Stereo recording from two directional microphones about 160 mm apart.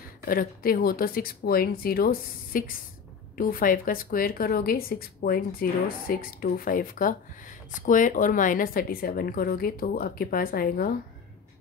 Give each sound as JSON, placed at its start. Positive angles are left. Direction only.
{"t": 0.2, "sound": "a woman's voice", "side_deg": 65}